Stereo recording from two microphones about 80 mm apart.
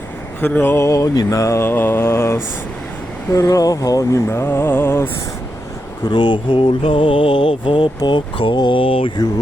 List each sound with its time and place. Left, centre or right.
0.4 s mantra: left
0.8 s mantra: left
1.6 s mantra: left
3.3 s mantra: left
4.3 s mantra: left
6.0 s mantra: left